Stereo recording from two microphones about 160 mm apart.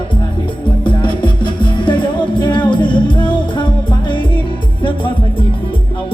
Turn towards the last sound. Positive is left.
turn(degrees=30)  # may be behind; listen again after turning